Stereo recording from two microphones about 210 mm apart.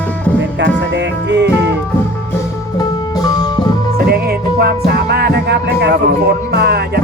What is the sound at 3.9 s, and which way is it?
Music, 50° right (ahead or behind).